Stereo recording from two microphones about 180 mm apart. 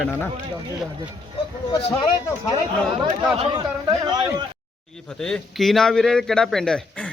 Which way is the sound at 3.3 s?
30° right (ahead or behind).